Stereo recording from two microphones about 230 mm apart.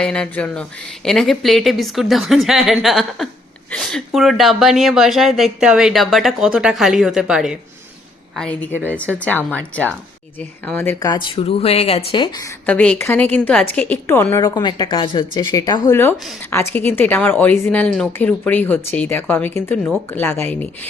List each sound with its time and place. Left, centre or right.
0.0 s speech: centre; by 12.5 s left
12.6 s speech: centre